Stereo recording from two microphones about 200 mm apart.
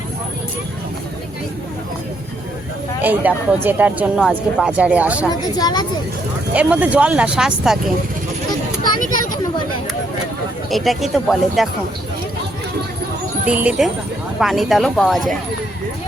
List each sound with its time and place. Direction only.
3.0 s speech: 10° right (ahead or behind)
5.3 s a woman's voice: 20° left (ahead or behind)
6.5 s speech: 5° right (ahead or behind)
10.7 s speech: centre (ahead or behind)
13.4 s speech: 5° right (ahead or behind)